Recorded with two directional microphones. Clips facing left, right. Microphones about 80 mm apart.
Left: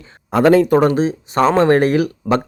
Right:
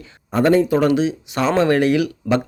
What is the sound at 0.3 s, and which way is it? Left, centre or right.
Speech, left.